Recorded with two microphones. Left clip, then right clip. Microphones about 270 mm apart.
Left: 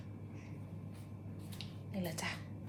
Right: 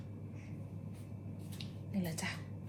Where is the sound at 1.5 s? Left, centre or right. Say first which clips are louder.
Right 1 dB; left.